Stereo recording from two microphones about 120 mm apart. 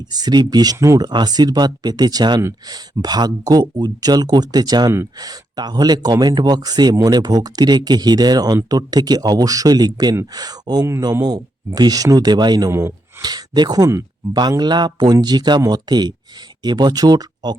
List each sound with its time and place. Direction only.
0.1 s speech: 35° right (ahead or behind)
12.7 s a sound: 20° right (ahead or behind)
13.2 s speech: 35° right (ahead or behind)